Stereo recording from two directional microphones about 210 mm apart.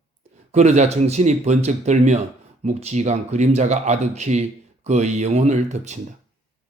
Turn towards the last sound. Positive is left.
turn(degrees=-35)  # may be behind; listen again after turning